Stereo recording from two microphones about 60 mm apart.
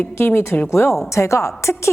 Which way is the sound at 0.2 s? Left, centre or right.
Left.